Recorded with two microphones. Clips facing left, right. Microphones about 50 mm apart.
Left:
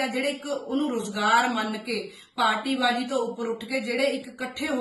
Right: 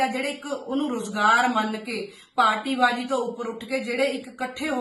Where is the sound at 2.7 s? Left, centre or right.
Right.